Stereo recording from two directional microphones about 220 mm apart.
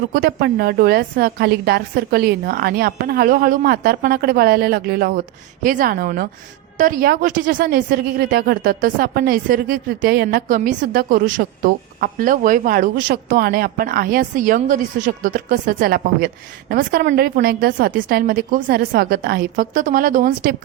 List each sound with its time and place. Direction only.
0.1 s a woman's voice: 45° right (ahead or behind)